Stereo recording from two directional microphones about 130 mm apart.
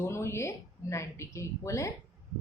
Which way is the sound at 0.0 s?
20° left (ahead or behind).